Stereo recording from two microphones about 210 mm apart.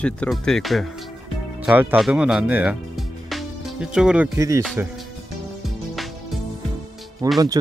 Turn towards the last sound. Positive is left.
turn(degrees=-15)  # may be behind; listen again after turning